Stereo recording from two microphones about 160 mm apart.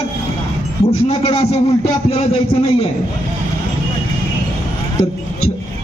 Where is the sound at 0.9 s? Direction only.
40° left (ahead or behind).